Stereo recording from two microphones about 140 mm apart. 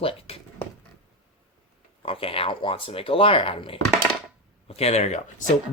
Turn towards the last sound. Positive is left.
turn(degrees=60)  # may be behind; listen again after turning